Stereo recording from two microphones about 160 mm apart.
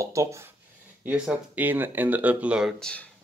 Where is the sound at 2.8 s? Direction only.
5° left (ahead or behind).